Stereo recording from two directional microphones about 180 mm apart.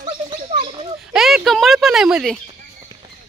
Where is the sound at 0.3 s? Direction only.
30° right (ahead or behind).